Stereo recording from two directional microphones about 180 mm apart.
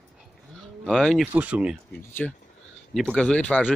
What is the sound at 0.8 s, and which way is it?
Speech, centre (ahead or behind).